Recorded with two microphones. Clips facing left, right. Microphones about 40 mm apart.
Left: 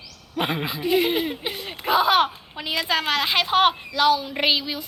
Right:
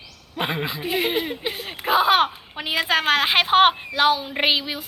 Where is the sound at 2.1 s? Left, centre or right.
Right.